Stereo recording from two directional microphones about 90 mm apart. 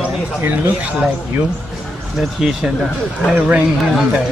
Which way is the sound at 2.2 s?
5° right (ahead or behind).